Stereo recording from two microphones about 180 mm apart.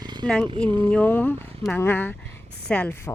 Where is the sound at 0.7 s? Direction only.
25° right (ahead or behind).